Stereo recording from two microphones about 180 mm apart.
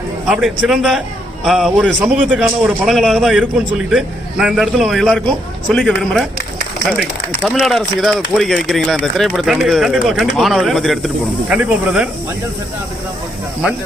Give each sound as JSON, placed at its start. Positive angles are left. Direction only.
{"t": 0.3, "sound": "speech", "side_deg": -5}
{"t": 7.4, "sound": "speech", "side_deg": 0}